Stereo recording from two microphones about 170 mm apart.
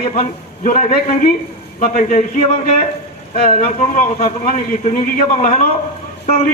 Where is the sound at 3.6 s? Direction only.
55° left (ahead or behind).